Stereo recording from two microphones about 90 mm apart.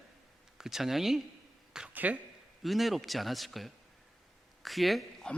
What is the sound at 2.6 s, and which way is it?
Speech, centre (ahead or behind).